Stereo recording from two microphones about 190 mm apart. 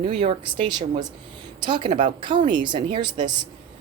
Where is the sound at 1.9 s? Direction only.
45° right (ahead or behind).